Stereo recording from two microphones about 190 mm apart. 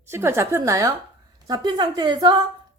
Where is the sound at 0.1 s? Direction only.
15° right (ahead or behind).